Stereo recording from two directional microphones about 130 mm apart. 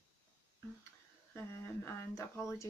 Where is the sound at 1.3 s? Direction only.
20° left (ahead or behind).